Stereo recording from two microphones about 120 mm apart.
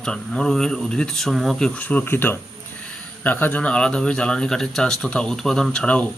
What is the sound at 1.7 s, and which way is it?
Speech, 10° left (ahead or behind).